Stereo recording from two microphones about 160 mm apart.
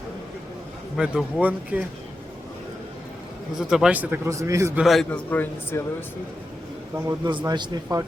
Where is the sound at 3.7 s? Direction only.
5° right (ahead or behind).